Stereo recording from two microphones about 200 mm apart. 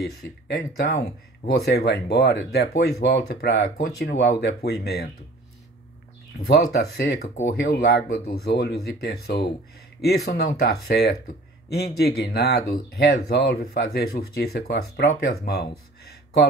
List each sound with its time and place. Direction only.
0.0 s speech: 55° left (ahead or behind)
6.4 s speech: 55° left (ahead or behind)